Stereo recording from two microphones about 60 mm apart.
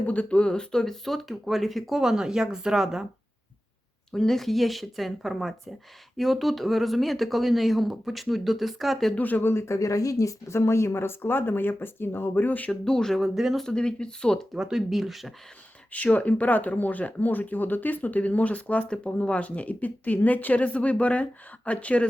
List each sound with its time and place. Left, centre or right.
0.0 s speech: left; by 3.1 s centre
4.1 s speech: centre
9.1 s speech: left
12.8 s speech: centre
13.6 s speech: centre
14.5 s speech: centre
15.9 s speech: left